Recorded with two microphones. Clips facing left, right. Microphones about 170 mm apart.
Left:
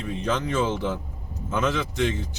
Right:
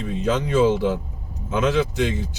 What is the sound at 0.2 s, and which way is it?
A man's voice, 10° right (ahead or behind).